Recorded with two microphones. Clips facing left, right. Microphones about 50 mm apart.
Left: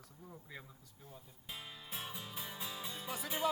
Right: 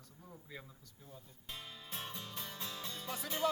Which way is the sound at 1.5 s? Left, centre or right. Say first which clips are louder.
Even; centre.